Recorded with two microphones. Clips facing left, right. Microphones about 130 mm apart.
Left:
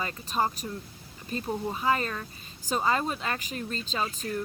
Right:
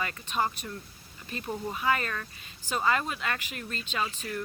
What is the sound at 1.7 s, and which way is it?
Speech, 30° left (ahead or behind).